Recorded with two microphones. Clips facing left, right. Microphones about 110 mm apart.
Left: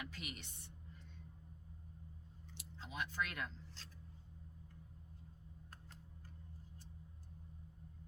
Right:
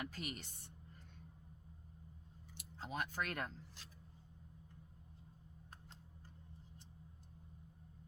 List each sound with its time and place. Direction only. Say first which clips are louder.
0.0 s a woman's voice: right 4 dB; 40° right (ahead or behind)
2.6 s speech: right 3 dB; 45° right (ahead or behind)